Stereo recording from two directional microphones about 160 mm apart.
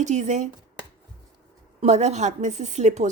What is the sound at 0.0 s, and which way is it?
Speech, 45° right (ahead or behind).